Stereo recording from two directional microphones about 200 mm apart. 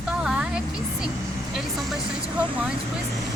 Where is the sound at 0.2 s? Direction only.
5° right (ahead or behind).